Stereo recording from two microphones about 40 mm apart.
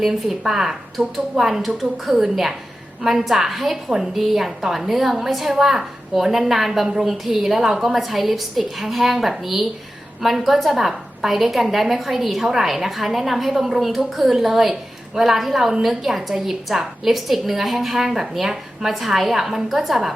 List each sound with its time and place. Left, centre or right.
0.0 s a woman's voice: centre